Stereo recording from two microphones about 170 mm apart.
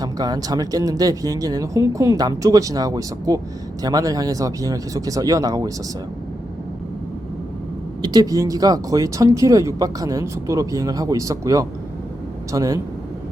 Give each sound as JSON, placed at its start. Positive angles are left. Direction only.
{"t": 0.0, "sound": "speech", "side_deg": -25}
{"t": 8.0, "sound": "speech", "side_deg": -20}